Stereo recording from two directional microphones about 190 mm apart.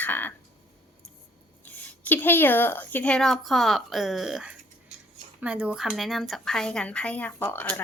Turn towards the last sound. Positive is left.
turn(degrees=10)  # may be behind; listen again after turning